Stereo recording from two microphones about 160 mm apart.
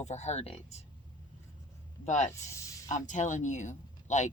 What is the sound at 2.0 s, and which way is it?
Speech, 50° left (ahead or behind).